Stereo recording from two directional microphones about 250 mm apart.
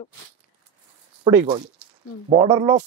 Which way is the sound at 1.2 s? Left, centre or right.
Centre.